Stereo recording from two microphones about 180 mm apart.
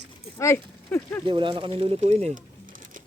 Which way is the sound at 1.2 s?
25° right (ahead or behind).